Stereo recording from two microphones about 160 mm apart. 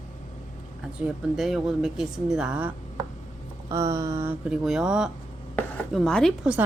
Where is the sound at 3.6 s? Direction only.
20° right (ahead or behind); by 6.5 s 5° left (ahead or behind).